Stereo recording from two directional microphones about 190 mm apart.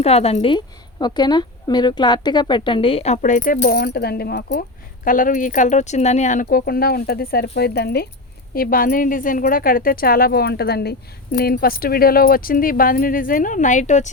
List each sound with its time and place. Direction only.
0.0 s a woman's voice: 30° left (ahead or behind); by 4.6 s 60° left (ahead or behind)
5.0 s speech: 45° left (ahead or behind)